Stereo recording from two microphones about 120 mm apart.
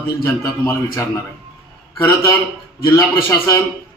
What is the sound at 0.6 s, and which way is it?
Speech, 20° left (ahead or behind).